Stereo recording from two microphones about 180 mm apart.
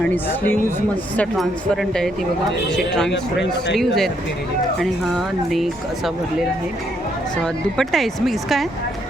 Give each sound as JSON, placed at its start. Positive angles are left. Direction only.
{"t": 0.0, "sound": "speech", "side_deg": 10}
{"t": 7.4, "sound": "speech", "side_deg": 0}